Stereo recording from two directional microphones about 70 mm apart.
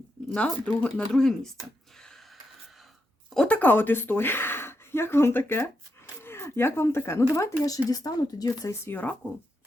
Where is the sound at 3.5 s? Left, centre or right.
Left.